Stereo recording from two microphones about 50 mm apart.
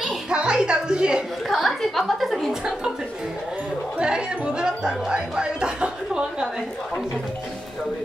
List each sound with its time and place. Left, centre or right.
0.3 s music: centre
1.5 s a sound: centre
4.0 s music: centre